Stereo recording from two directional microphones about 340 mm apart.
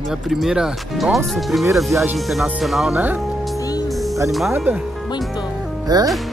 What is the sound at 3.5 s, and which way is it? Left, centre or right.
Music, centre.